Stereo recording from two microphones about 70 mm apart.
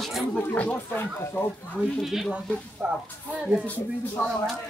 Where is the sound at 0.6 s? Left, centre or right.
Left.